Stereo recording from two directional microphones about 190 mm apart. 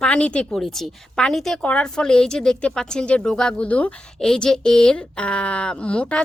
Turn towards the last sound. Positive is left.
turn(degrees=5)  # may be behind; listen again after turning